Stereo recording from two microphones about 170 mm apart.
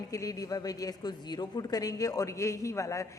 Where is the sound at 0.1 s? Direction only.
20° left (ahead or behind).